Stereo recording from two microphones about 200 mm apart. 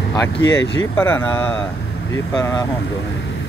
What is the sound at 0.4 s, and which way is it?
Speech, 60° left (ahead or behind).